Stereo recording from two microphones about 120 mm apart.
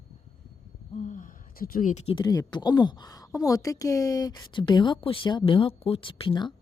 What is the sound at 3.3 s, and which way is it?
A woman's voice, 30° left (ahead or behind).